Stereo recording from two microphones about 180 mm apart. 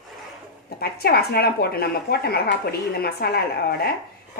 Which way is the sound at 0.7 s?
60° left (ahead or behind).